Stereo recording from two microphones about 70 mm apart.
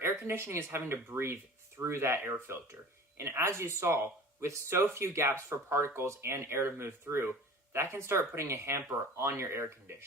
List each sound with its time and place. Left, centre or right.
0.0 s speech: right